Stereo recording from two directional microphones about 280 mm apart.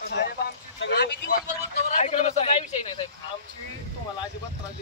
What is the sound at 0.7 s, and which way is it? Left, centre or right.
Speech, left.